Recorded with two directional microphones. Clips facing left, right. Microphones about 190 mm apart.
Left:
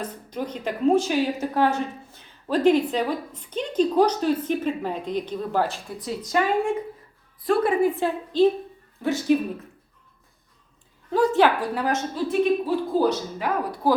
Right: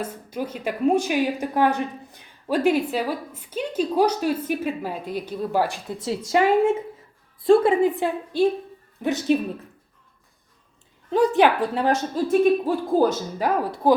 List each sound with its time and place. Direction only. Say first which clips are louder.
0.0 s a woman's voice: right 1 dB; 10° right (ahead or behind)
6.0 s a woman's voice: right 4 dB; 25° right (ahead or behind)
11.1 s a woman's voice: right 1 dB; 20° right (ahead or behind)
12.1 s speech: right 3 dB; 45° right (ahead or behind)
13.8 s a woman's voice: right 3 dB; 20° right (ahead or behind)